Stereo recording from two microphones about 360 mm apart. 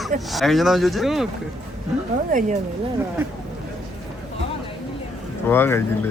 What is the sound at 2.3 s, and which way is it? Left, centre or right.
Speech, right.